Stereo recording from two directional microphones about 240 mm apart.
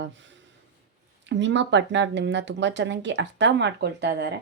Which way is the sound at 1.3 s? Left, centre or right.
Right.